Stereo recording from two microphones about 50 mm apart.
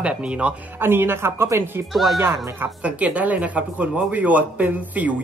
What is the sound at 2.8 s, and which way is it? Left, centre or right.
Speech, right.